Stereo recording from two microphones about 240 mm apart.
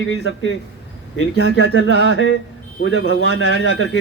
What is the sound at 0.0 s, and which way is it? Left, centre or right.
A man's voice, left.